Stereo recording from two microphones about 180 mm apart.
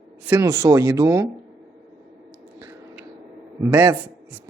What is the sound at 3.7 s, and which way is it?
Speech, 15° right (ahead or behind).